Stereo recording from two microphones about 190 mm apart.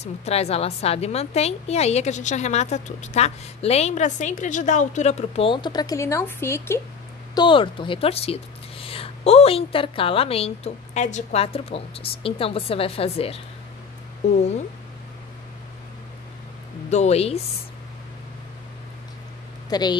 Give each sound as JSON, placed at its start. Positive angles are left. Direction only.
{"t": 0.0, "sound": "a woman's voice", "side_deg": 35}
{"t": 7.3, "sound": "speech", "side_deg": 25}
{"t": 16.9, "sound": "a woman's voice", "side_deg": 35}
{"t": 19.7, "sound": "speech", "side_deg": 20}